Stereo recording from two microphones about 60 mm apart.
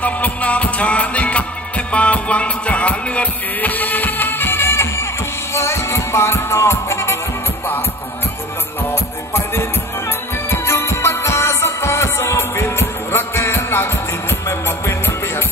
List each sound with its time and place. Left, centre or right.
0.0 s music: left
10.5 s music: left
14.9 s music: left